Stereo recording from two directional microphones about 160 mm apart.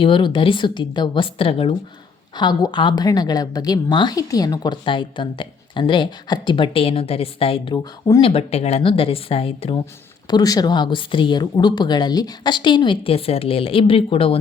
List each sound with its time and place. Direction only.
0.0 s a woman's voice: 30° left (ahead or behind)
10.2 s a woman's voice: 25° left (ahead or behind)